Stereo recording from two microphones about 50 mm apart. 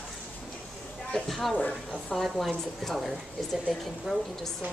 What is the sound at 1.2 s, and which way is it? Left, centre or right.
Speech, centre.